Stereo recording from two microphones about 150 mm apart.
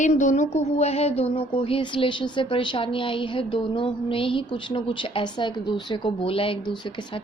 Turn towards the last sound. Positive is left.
turn(degrees=30)  # may be behind; listen again after turning